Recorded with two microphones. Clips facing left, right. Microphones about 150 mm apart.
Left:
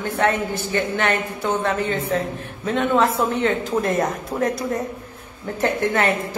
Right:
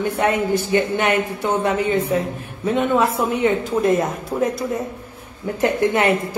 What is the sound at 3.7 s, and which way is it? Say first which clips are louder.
Speech: right 3 dB; centre (ahead or behind).